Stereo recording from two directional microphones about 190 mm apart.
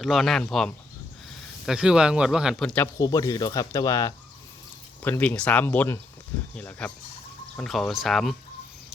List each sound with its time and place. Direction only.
0.0 s speech: centre (ahead or behind)
3.0 s speech: 20° left (ahead or behind); by 8.4 s centre (ahead or behind)